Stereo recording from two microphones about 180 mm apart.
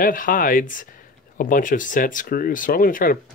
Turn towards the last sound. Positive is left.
turn(degrees=50)  # may be behind; listen again after turning